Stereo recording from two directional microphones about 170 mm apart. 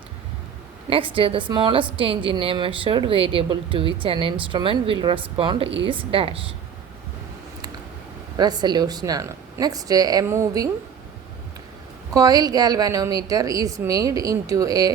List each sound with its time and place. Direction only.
0.9 s speech: 30° right (ahead or behind)
8.4 s a woman's voice: 25° right (ahead or behind)
12.1 s a woman's voice: 20° right (ahead or behind)